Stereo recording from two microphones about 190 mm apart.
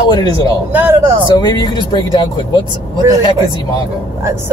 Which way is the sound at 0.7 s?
10° right (ahead or behind).